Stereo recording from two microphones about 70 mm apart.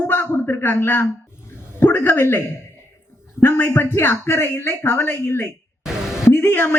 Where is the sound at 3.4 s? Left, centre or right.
Left.